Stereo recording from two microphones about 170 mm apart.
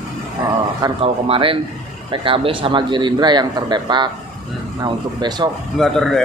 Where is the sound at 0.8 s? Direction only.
30° right (ahead or behind).